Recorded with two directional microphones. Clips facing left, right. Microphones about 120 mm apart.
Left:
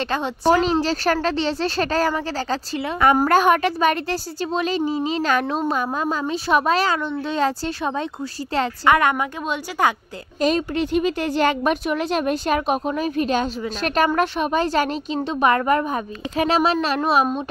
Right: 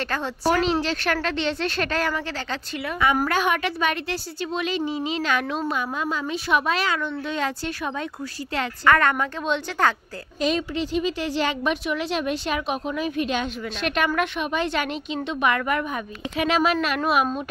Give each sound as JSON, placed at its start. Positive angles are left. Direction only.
{"t": 0.0, "sound": "speech", "side_deg": 20}
{"t": 0.7, "sound": "a woman's voice", "side_deg": 35}
{"t": 3.3, "sound": "a woman's voice", "side_deg": 45}
{"t": 8.8, "sound": "a woman's voice", "side_deg": 15}
{"t": 10.4, "sound": "a woman's voice", "side_deg": 50}